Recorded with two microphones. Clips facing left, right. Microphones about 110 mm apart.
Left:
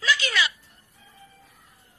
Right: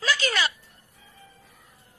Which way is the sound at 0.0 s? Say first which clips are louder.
Even; 40° right (ahead or behind).